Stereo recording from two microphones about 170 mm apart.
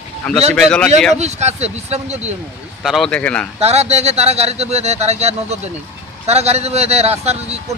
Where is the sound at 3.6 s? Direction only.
40° right (ahead or behind).